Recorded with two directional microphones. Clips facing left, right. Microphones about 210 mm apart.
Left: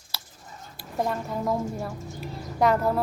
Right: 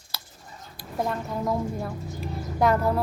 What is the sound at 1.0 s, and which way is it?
A woman's voice, centre (ahead or behind).